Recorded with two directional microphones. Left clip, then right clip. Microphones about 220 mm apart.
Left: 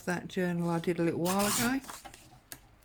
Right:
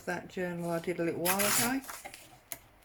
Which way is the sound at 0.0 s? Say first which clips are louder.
Left 2 dB; 50° left (ahead or behind).